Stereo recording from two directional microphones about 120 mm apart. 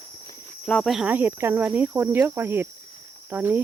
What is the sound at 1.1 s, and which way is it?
Cricket, 15° right (ahead or behind).